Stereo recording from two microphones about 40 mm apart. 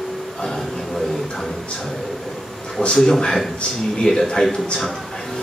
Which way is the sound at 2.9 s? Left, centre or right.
Centre.